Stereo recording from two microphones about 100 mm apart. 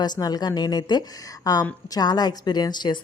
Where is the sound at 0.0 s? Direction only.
45° left (ahead or behind).